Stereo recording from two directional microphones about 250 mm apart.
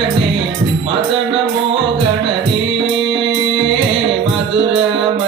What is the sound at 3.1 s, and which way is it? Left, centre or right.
Music, right.